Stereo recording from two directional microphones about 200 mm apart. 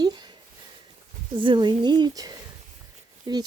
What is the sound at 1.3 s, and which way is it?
Speech, 25° right (ahead or behind).